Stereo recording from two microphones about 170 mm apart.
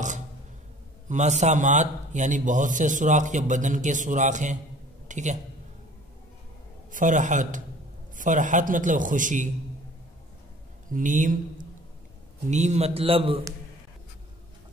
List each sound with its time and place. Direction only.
1.0 s a man's voice: 45° right (ahead or behind)
6.9 s a man's voice: 50° right (ahead or behind)
10.9 s speech: 50° right (ahead or behind); by 13.4 s 35° right (ahead or behind)